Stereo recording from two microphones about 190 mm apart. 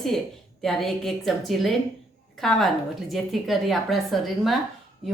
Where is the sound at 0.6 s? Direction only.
Centre (ahead or behind).